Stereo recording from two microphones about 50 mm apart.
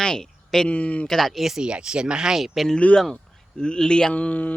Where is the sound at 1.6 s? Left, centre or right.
Centre.